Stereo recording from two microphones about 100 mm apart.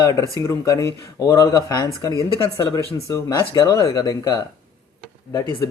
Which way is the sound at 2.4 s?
55° left (ahead or behind).